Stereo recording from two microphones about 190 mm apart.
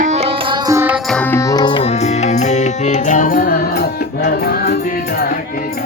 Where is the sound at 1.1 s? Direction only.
10° left (ahead or behind); by 5.3 s 55° left (ahead or behind).